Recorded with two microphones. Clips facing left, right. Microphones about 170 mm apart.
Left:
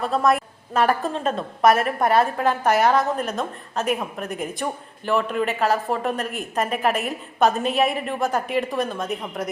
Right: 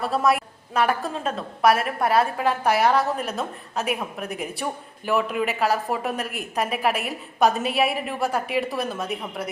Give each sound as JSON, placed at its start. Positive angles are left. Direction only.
{"t": 0.0, "sound": "a woman's voice", "side_deg": -5}